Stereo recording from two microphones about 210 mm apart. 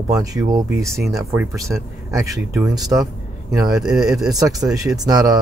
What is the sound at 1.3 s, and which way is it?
Speech, 10° right (ahead or behind).